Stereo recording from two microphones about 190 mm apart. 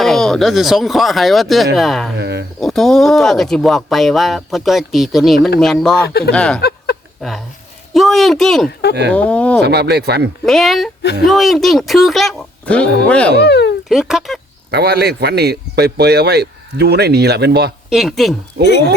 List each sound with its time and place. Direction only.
0.0 s speech: centre (ahead or behind)
2.1 s a man's voice: 65° right (ahead or behind)
2.6 s speech: centre (ahead or behind)
6.6 s a sound: 55° left (ahead or behind)
7.2 s speech: centre (ahead or behind)
9.6 s a man's voice: 60° right (ahead or behind)
10.4 s speech: centre (ahead or behind)
13.4 s speech: 65° left (ahead or behind)
13.8 s speech: centre (ahead or behind)
14.7 s a man's voice: 60° right (ahead or behind)
17.8 s speech: centre (ahead or behind)
18.6 s a man's voice: 55° right (ahead or behind)